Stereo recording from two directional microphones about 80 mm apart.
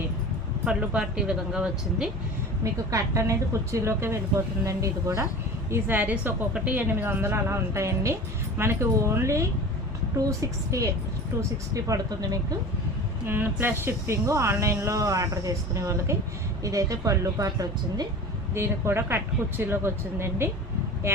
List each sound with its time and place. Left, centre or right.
0.6 s speech: centre
2.9 s a woman's voice: right
5.7 s a woman's voice: right
13.2 s a woman's voice: right
18.5 s a woman's voice: right